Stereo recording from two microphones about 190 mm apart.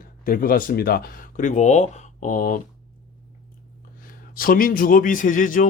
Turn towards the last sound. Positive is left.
turn(degrees=45)  # may be behind; listen again after turning